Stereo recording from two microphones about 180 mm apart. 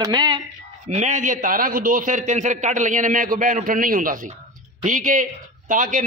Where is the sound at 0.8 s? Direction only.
40° right (ahead or behind).